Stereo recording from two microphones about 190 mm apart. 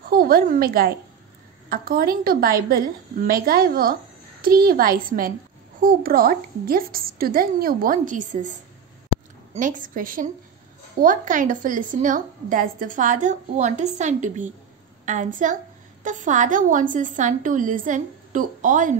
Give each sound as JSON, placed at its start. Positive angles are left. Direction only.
{"t": 0.1, "sound": "a woman's voice", "side_deg": -50}